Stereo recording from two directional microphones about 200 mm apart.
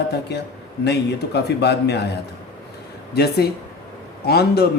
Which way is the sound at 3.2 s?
55° left (ahead or behind).